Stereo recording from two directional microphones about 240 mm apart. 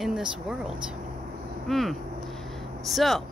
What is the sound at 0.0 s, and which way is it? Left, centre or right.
Speech, centre.